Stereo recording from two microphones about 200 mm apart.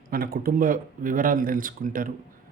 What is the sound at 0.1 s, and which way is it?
Speech, 50° right (ahead or behind).